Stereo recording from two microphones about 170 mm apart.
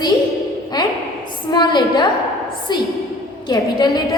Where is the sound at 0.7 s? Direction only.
25° left (ahead or behind).